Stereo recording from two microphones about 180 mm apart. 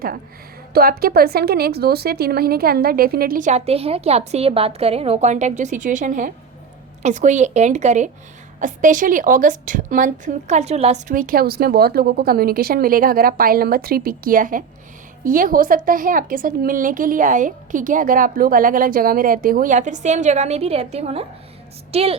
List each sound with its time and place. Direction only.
0.7 s a woman's voice: 55° right (ahead or behind); by 11.0 s 35° right (ahead or behind)
11.1 s a woman's voice: 50° right (ahead or behind); by 22.1 s 35° right (ahead or behind)